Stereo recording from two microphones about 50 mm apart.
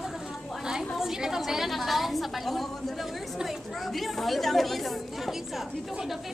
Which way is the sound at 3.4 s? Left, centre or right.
Centre.